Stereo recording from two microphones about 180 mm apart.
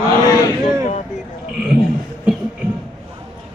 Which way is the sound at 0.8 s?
45° left (ahead or behind).